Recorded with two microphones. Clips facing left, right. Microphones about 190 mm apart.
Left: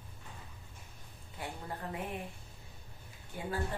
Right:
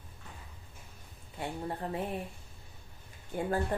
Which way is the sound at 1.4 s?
30° right (ahead or behind).